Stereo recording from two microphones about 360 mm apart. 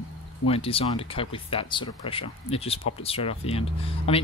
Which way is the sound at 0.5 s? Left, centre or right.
Centre.